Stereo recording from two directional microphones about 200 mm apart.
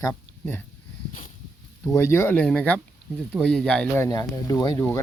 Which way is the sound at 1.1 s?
40° left (ahead or behind).